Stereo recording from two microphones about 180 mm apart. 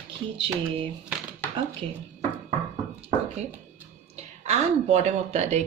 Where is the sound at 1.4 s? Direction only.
10° left (ahead or behind).